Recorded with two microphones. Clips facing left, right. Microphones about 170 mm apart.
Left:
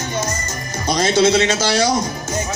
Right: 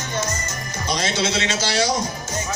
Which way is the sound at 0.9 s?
40° left (ahead or behind).